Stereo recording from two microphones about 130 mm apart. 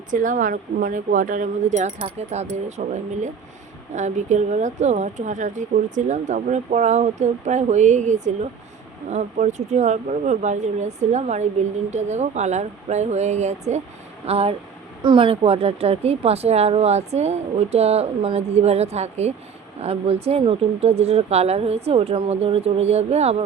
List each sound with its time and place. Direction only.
0.1 s speech: 90° right; by 13.8 s 60° right (ahead or behind)
14.3 s speech: 50° right (ahead or behind)